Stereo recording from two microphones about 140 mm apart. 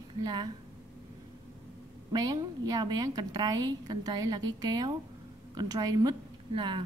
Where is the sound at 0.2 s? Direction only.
30° right (ahead or behind).